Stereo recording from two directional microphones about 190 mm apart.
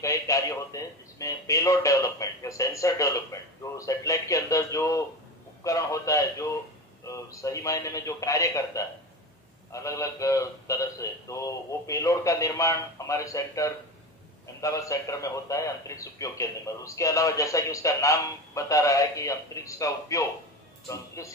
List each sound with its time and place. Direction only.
0.0 s a sound: 15° left (ahead or behind)
3.7 s radio: 15° left (ahead or behind)
5.6 s a man's voice: 15° left (ahead or behind)